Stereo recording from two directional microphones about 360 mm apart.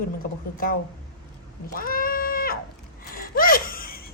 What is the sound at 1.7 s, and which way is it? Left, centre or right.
Cat, left.